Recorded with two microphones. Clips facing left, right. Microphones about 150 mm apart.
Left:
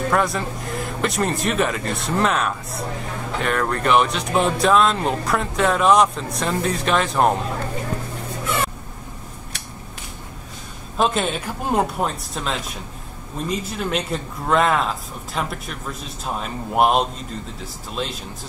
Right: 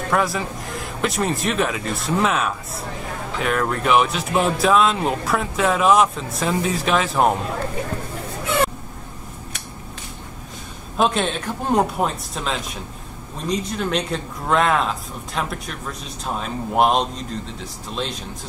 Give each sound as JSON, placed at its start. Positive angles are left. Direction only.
{"t": 0.1, "sound": "speech", "side_deg": 0}
{"t": 11.0, "sound": "speech", "side_deg": 0}